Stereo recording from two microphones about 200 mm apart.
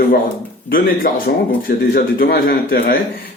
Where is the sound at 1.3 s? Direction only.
50° left (ahead or behind).